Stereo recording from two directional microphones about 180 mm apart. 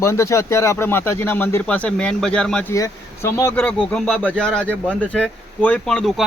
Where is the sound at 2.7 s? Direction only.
15° left (ahead or behind).